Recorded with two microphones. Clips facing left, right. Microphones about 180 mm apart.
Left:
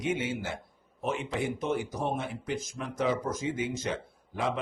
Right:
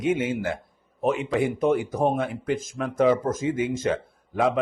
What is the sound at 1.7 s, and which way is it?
Speech, 60° right (ahead or behind).